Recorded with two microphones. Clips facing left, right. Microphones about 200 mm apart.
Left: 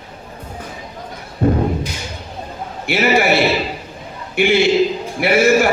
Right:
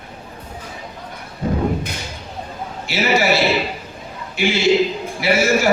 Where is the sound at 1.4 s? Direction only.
55° left (ahead or behind).